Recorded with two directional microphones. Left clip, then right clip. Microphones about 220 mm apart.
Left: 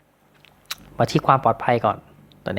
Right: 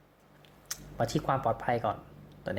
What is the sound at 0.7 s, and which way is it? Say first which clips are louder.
Speech: left 10 dB; 20° left (ahead or behind).